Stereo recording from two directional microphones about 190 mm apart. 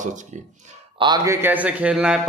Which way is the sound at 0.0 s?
40° right (ahead or behind).